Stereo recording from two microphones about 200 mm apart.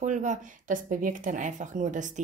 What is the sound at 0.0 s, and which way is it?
Speech, 35° right (ahead or behind).